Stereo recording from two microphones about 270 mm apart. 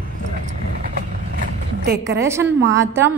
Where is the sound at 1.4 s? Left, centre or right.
Right.